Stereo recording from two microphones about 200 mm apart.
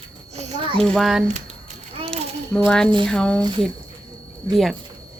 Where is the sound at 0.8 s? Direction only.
Centre (ahead or behind).